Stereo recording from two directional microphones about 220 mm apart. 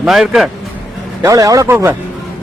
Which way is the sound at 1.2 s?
15° right (ahead or behind).